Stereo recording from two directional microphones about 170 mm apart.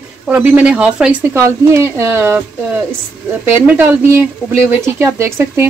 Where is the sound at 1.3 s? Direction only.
15° right (ahead or behind).